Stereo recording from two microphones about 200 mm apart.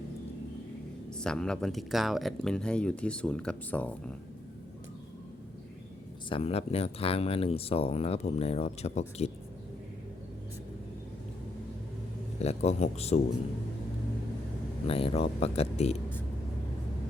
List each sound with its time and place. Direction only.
1.2 s speech: 5° left (ahead or behind)
6.2 s speech: 25° left (ahead or behind)
12.4 s speech: 30° left (ahead or behind)
14.8 s speech: 30° left (ahead or behind)